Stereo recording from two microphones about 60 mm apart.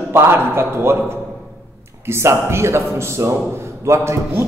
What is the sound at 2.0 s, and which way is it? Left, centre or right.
A man's voice, right.